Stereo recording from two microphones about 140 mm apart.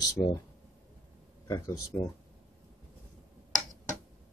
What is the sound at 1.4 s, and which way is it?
Speech, 25° left (ahead or behind).